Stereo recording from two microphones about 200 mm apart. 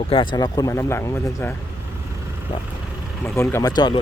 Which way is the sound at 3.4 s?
15° left (ahead or behind).